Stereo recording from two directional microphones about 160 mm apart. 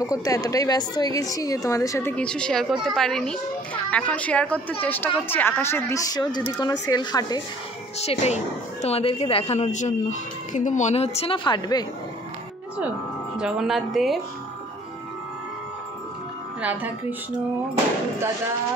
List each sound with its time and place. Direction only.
0.0 s a woman's voice: 20° left (ahead or behind)
8.0 s a woman's voice: 40° left (ahead or behind)
13.4 s speech: 5° right (ahead or behind)